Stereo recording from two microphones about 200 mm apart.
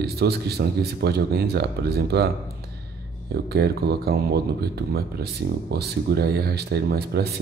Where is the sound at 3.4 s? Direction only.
55° right (ahead or behind).